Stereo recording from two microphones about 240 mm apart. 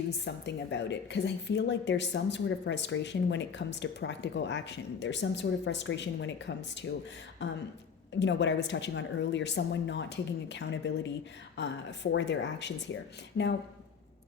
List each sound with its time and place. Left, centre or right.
0.3 s a woman's voice: left
8.2 s a woman's voice: left